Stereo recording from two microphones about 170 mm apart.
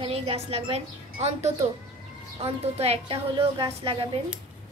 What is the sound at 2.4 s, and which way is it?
A woman's voice, 35° right (ahead or behind).